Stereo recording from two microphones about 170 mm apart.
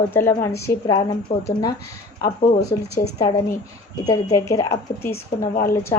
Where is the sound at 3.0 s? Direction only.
60° left (ahead or behind).